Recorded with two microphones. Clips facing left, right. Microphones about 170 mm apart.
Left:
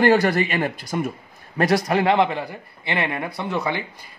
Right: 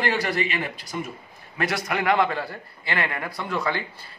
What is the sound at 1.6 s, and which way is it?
A man's voice, 35° left (ahead or behind).